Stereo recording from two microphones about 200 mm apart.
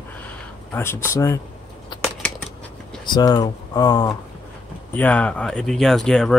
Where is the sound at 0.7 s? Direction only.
15° left (ahead or behind).